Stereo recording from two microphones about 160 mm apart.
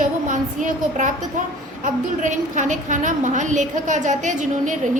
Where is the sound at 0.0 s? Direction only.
50° right (ahead or behind).